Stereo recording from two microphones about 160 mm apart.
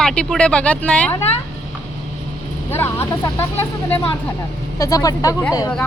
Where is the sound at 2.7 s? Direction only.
15° left (ahead or behind).